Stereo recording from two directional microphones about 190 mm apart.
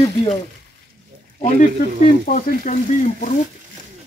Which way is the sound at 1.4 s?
45° left (ahead or behind).